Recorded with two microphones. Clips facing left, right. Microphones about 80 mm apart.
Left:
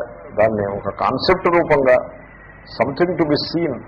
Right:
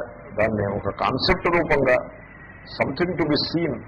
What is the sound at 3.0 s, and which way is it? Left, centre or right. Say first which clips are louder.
Speech: left 5 dB; left.